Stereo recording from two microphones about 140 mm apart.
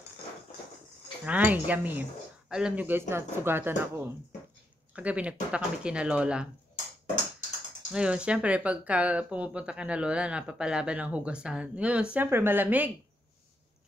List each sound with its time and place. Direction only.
1.2 s speech: 10° right (ahead or behind)
7.9 s speech: 5° right (ahead or behind)